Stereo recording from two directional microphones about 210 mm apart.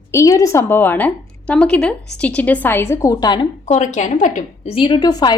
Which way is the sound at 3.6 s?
35° left (ahead or behind).